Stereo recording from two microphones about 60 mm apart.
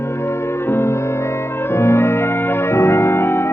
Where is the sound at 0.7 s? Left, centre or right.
Left.